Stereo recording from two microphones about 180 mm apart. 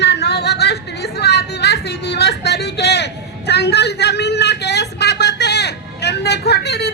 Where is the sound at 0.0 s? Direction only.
70° left (ahead or behind).